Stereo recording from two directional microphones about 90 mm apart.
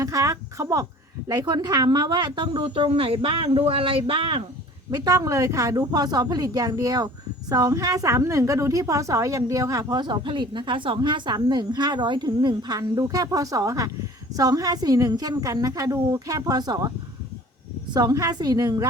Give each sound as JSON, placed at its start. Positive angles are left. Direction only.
{"t": 0.0, "sound": "a sound", "side_deg": -40}
{"t": 1.3, "sound": "speech", "side_deg": -50}
{"t": 4.9, "sound": "a woman's voice", "side_deg": -45}
{"t": 9.9, "sound": "a woman's voice", "side_deg": -55}
{"t": 17.9, "sound": "a woman's voice", "side_deg": -45}